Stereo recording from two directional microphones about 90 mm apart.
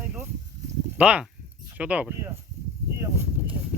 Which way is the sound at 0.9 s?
10° right (ahead or behind).